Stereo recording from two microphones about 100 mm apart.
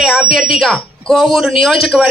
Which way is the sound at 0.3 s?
5° right (ahead or behind).